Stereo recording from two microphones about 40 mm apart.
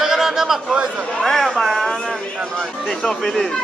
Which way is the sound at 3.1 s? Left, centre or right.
Centre.